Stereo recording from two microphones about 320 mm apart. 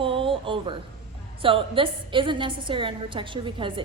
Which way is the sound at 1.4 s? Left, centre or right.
Centre.